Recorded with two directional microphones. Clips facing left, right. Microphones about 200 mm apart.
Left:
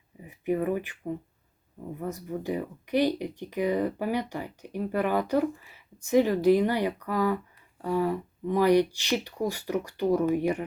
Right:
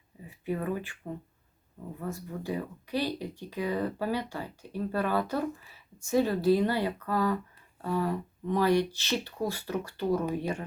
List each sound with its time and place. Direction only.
0.3 s speech: 20° left (ahead or behind)
2.0 s speech: 20° left (ahead or behind)